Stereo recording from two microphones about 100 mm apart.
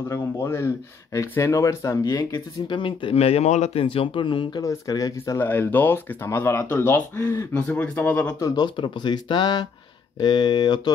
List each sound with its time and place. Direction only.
0.1 s speech: 25° left (ahead or behind); by 3.2 s 55° left (ahead or behind)
3.2 s speech: 90° left
3.8 s speech: 65° left (ahead or behind)
4.6 s speech: 35° left (ahead or behind)
5.4 s speech: 20° left (ahead or behind)
8.4 s speech: 35° left (ahead or behind)
8.6 s speech: 50° left (ahead or behind)